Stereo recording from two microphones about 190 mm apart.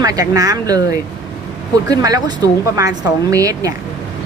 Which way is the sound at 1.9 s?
20° right (ahead or behind).